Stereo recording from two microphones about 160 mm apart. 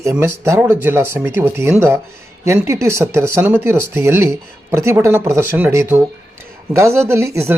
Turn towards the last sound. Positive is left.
turn(degrees=-15)  # may be behind; listen again after turning